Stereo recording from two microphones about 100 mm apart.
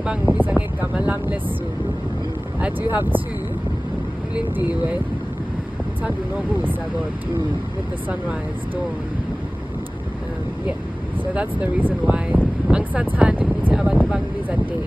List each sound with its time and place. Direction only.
0.0 s speech: 10° right (ahead or behind)
2.6 s speech: 20° right (ahead or behind)
6.0 s speech: 20° right (ahead or behind)
11.3 s speech: 15° right (ahead or behind)